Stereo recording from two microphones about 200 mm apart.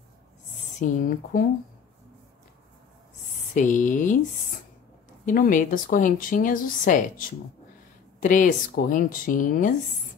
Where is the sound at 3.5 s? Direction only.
40° left (ahead or behind).